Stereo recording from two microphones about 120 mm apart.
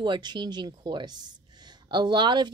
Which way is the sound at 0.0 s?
40° right (ahead or behind).